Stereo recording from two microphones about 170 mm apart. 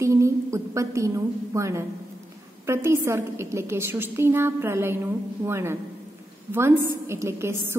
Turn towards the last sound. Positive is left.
turn(degrees=-15)  # may be behind; listen again after turning